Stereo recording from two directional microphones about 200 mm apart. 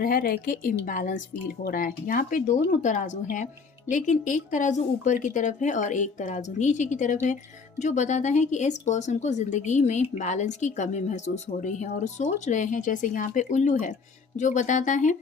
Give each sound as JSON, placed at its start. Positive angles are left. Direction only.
{"t": 0.0, "sound": "speech", "side_deg": 45}